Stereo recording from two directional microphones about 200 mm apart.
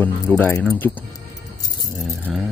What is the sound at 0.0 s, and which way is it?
Speech, 10° left (ahead or behind).